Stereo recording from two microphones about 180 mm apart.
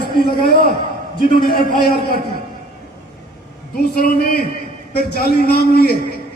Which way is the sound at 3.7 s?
55° left (ahead or behind).